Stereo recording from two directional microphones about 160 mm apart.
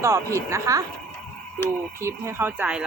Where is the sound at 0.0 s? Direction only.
20° right (ahead or behind).